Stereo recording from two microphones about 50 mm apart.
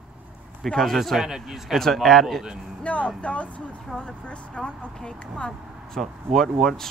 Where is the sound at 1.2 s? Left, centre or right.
Centre.